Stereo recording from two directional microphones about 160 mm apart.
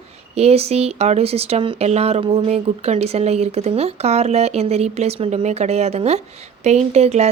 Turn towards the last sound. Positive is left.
turn(degrees=-45)  # may be behind; listen again after turning